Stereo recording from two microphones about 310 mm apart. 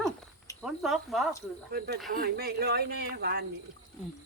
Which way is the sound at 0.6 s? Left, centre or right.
Centre.